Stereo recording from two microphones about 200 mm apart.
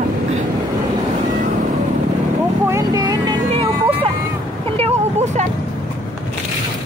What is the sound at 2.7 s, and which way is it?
Vehicle, 15° right (ahead or behind).